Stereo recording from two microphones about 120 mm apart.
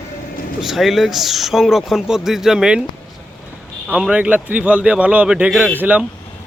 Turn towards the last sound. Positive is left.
turn(degrees=-15)  # may be behind; listen again after turning